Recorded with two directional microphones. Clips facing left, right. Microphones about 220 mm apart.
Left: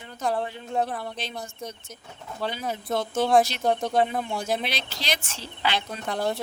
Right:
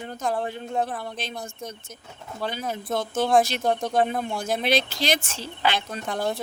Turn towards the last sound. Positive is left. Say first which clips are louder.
# even
turn(degrees=0)  # may be behind; listen again after turning